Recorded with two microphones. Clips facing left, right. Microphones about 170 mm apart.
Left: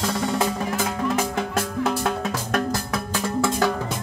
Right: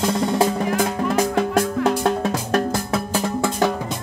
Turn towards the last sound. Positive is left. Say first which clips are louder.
# right 4 dB
turn(degrees=-35)  # may be behind; listen again after turning